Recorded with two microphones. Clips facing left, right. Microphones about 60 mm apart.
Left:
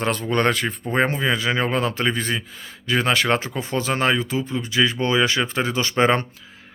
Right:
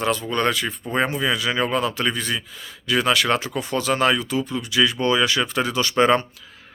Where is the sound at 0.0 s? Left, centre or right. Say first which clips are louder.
Left 1 dB; left.